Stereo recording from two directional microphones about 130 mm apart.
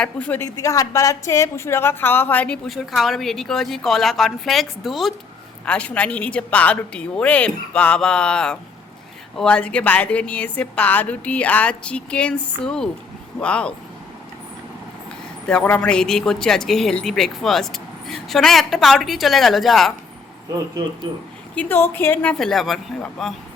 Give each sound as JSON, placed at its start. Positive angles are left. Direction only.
{"t": 0.0, "sound": "a woman's voice", "side_deg": 10}
{"t": 0.4, "sound": "a woman's voice", "side_deg": 25}
{"t": 2.6, "sound": "a woman's voice", "side_deg": 0}
{"t": 15.4, "sound": "speech", "side_deg": 10}
{"t": 21.5, "sound": "a woman's voice", "side_deg": 15}